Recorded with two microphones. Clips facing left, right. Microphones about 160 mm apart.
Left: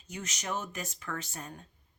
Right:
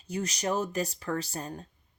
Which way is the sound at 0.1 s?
35° right (ahead or behind).